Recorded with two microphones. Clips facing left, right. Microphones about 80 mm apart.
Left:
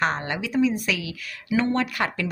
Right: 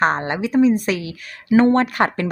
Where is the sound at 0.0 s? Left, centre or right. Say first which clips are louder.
Right 6 dB; right.